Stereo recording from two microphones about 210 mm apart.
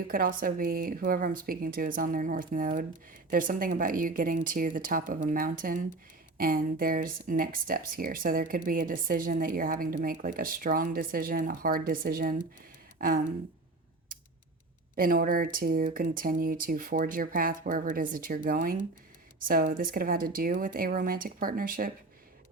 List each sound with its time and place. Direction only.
0.1 s speech: 45° right (ahead or behind)
13.0 s a sound: 40° right (ahead or behind)
14.9 s speech: 40° right (ahead or behind)